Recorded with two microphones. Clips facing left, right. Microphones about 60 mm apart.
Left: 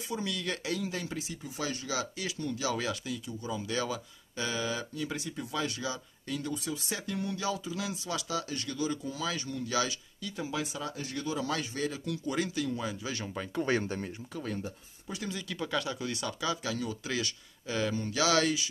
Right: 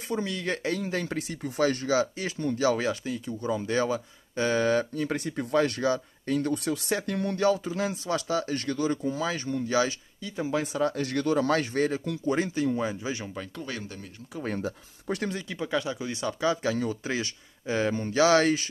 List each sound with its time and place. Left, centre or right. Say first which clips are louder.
0.1 s speech: right 5 dB; right
3.3 s speech: right 9 dB; right
11.0 s speech: right 9 dB; right
13.6 s speech: left 6 dB; left
14.6 s speech: right 7 dB; right
15.3 s speech: right 4 dB; right